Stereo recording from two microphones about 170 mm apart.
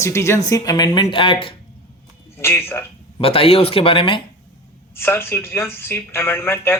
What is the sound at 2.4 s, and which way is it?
Speech, 15° left (ahead or behind).